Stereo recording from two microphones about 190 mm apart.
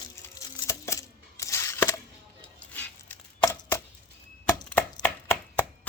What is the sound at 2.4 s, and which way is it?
Chopping, 10° left (ahead or behind).